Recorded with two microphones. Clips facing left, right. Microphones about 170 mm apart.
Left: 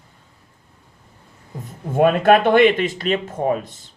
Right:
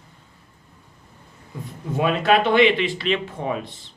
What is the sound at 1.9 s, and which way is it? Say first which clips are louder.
A man's voice: left 5 dB; 50° left (ahead or behind).